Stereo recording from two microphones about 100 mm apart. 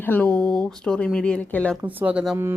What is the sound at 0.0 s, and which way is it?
Speech, 15° left (ahead or behind).